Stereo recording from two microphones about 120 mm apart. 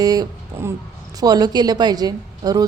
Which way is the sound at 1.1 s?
35° right (ahead or behind).